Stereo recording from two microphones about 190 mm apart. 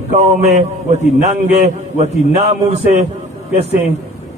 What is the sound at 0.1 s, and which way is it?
A man's voice, 35° right (ahead or behind).